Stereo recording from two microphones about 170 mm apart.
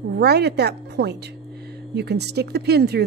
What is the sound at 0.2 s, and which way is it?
A woman's voice, 70° right (ahead or behind).